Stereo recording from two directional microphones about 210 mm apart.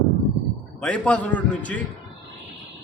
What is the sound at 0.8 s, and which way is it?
Speech, 5° left (ahead or behind).